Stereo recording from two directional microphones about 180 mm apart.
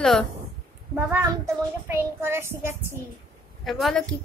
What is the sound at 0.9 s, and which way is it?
A child's voice, 15° right (ahead or behind).